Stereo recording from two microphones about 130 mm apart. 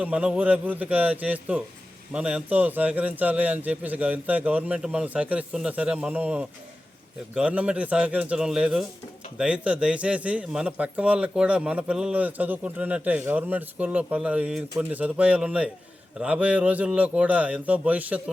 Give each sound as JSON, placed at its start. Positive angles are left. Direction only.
{"t": 0.0, "sound": "a man's voice", "side_deg": -10}